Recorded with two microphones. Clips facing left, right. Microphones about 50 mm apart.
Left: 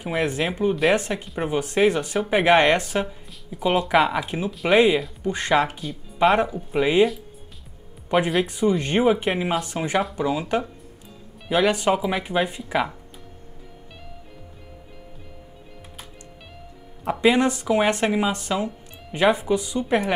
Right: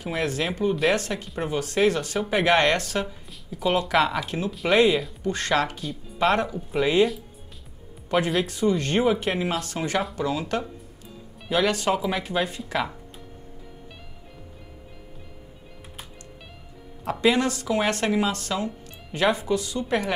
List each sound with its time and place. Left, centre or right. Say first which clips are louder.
0.0 s speech: left 3 dB; left
8.1 s speech: left 2 dB; left
17.0 s speech: left 3 dB; centre